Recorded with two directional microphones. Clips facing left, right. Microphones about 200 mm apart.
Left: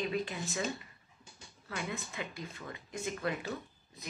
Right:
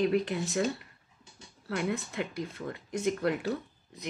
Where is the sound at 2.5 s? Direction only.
55° right (ahead or behind).